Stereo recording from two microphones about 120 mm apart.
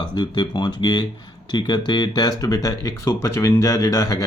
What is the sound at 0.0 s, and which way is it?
Speech, 40° left (ahead or behind).